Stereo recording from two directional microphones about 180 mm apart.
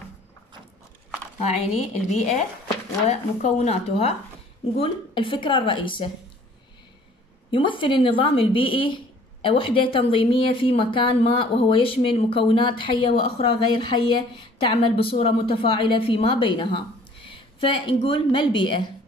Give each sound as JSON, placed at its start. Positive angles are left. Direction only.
{"t": 1.4, "sound": "speech", "side_deg": 40}
{"t": 7.5, "sound": "speech", "side_deg": 25}